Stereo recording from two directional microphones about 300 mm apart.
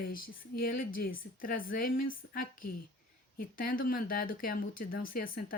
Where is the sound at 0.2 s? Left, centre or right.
Left.